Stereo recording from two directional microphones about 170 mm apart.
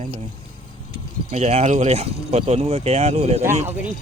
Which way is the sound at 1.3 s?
40° right (ahead or behind).